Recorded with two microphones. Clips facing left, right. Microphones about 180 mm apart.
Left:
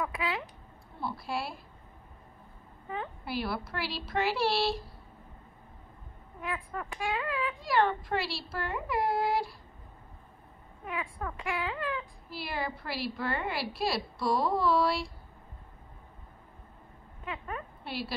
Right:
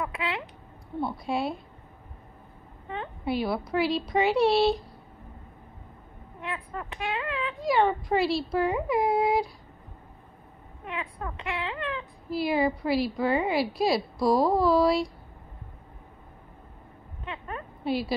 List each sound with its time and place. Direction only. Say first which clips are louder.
0.0 s speech: right 2 dB; 25° right (ahead or behind)
1.0 s a woman's voice: right 6 dB; centre (ahead or behind)
3.3 s a woman's voice: right 8 dB; centre (ahead or behind)
6.4 s speech: right 1 dB; 25° right (ahead or behind)
7.6 s a woman's voice: right 5 dB; centre (ahead or behind)
10.9 s speech: right 1 dB; 25° right (ahead or behind)
12.3 s a woman's voice: right 12 dB; centre (ahead or behind)
17.2 s dog: right 1 dB; 25° right (ahead or behind)
17.8 s a woman's voice: right 11 dB; centre (ahead or behind)